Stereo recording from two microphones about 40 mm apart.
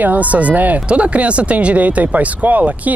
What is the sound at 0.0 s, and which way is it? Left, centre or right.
Speech, right.